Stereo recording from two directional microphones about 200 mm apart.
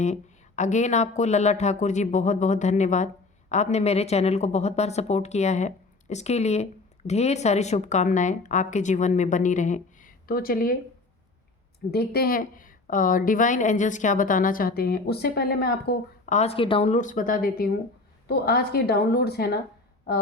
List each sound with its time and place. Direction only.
0.0 s speech: 35° left (ahead or behind)
11.9 s a woman's voice: 50° left (ahead or behind)
16.3 s a woman's voice: 30° left (ahead or behind); by 19.5 s 55° left (ahead or behind)